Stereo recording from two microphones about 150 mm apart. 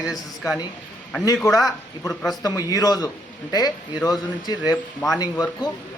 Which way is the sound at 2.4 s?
25° left (ahead or behind).